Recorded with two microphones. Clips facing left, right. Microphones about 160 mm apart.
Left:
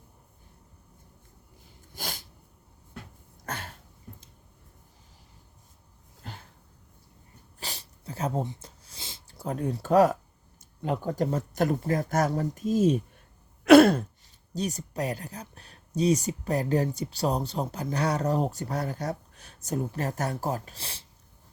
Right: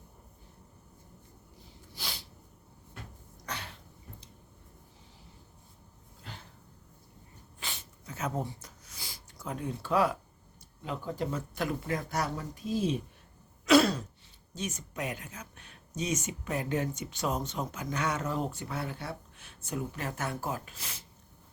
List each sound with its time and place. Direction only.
1.9 s sneeze: 45° left (ahead or behind)
3.4 s throat clearing: 50° left (ahead or behind)
7.6 s a sound: 35° left (ahead or behind)
9.5 s speech: 40° left (ahead or behind)
13.7 s throat clearing: 55° left (ahead or behind)
14.5 s speech: 35° left (ahead or behind)